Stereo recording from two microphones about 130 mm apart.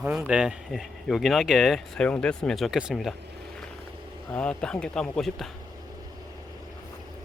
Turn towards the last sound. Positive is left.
turn(degrees=5)  # may be behind; listen again after turning